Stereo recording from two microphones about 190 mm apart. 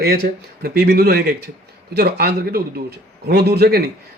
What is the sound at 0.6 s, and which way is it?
A man's voice, 55° right (ahead or behind).